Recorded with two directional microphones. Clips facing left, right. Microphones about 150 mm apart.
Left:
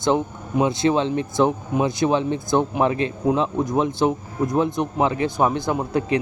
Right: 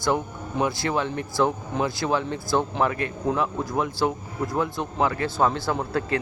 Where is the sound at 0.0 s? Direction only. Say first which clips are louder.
Left 4 dB; 20° left (ahead or behind).